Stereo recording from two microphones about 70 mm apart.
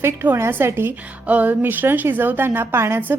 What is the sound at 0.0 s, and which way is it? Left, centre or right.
A woman's voice, right.